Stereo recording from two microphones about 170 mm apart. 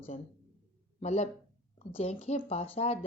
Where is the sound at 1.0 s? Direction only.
40° left (ahead or behind).